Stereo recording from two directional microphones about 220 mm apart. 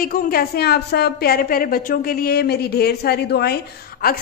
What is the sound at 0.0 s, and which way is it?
A man's voice, 40° left (ahead or behind).